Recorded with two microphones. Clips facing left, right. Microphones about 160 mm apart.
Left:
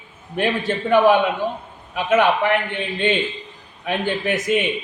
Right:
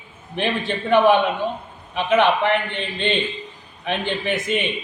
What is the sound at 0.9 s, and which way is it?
A man's voice, 5° left (ahead or behind).